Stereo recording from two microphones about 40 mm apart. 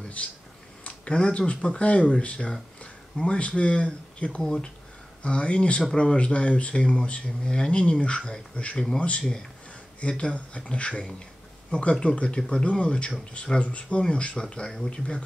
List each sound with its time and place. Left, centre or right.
0.2 s speech: left
9.9 s speech: left